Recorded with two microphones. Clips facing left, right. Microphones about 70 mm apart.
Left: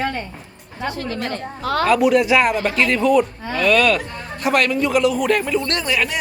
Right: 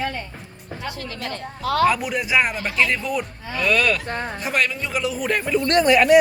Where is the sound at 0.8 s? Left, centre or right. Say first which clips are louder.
Left 7 dB; left.